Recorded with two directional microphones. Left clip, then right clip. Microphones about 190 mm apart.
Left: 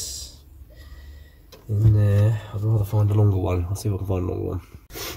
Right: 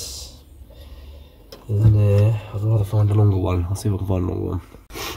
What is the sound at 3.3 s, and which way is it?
Speech, centre (ahead or behind).